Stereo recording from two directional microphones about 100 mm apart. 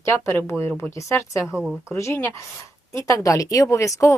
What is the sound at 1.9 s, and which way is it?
Speech, 25° left (ahead or behind).